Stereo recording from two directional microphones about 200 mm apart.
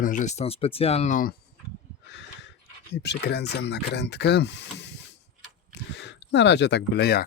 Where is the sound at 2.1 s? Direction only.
60° left (ahead or behind).